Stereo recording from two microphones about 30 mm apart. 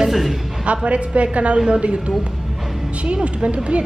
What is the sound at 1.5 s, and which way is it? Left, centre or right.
Speech, right.